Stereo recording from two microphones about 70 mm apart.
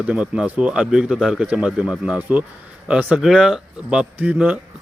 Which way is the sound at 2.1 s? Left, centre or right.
Right.